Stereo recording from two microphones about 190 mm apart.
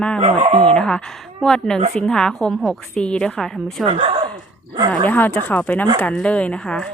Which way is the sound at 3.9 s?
35° right (ahead or behind).